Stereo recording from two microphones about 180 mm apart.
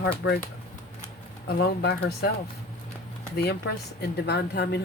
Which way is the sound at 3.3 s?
65° left (ahead or behind).